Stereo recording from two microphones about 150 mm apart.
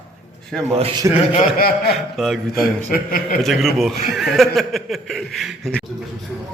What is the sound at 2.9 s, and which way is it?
Speech, 70° left (ahead or behind).